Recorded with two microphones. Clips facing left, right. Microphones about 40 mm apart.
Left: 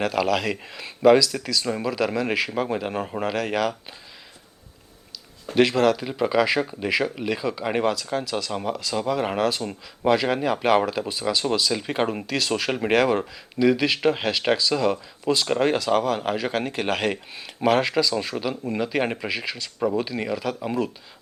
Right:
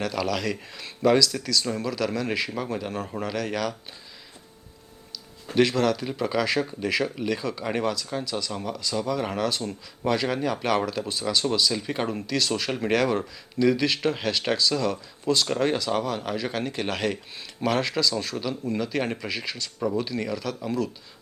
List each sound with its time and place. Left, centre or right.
0.0 s speech: left
5.5 s speech: left
6.0 s speech: centre
13.7 s speech: centre